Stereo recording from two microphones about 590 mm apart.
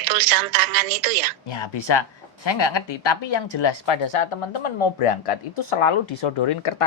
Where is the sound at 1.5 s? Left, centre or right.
Left.